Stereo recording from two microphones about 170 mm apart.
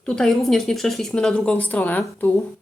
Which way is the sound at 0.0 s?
Centre (ahead or behind).